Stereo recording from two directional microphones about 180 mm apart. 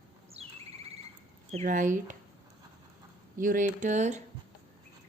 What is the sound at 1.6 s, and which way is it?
Speech, 45° right (ahead or behind).